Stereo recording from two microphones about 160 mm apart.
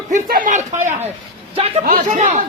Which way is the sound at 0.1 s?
60° right (ahead or behind).